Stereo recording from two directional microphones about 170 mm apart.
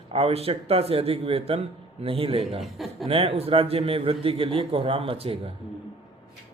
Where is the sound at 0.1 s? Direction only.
35° right (ahead or behind).